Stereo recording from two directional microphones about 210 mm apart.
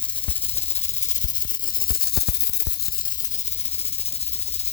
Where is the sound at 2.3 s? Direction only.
45° left (ahead or behind).